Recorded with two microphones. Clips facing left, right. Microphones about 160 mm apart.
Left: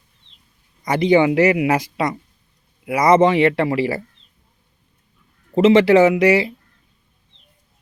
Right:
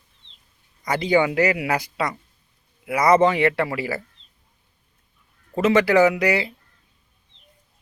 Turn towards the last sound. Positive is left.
turn(degrees=25)  # may be behind; listen again after turning